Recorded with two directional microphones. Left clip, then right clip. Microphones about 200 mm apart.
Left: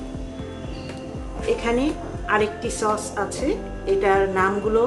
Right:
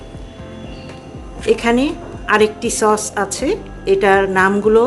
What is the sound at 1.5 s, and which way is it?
A woman's voice, 55° right (ahead or behind).